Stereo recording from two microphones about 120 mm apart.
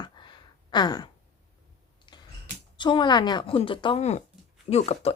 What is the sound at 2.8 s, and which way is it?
Speech, 40° left (ahead or behind).